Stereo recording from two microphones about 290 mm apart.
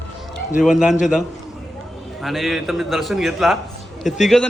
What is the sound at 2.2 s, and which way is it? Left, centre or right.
A man's voice, centre.